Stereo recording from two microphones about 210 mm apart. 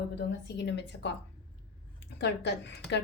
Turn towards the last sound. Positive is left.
turn(degrees=55)  # may be behind; listen again after turning